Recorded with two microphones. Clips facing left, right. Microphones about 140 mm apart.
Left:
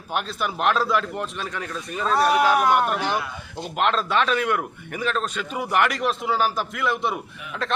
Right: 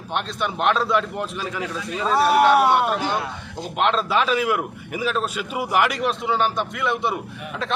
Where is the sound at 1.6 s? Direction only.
90° right.